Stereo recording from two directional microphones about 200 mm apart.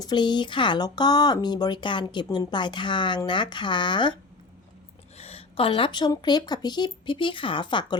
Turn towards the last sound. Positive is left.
turn(degrees=25)  # may be behind; listen again after turning